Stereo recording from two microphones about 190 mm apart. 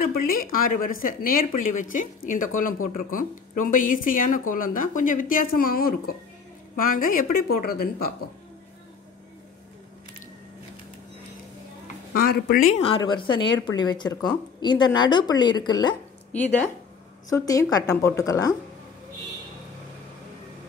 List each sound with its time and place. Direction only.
0.1 s speech: 50° left (ahead or behind)
12.2 s speech: 55° left (ahead or behind)
13.0 s a woman's voice: 25° left (ahead or behind)
17.3 s a woman's voice: 20° left (ahead or behind)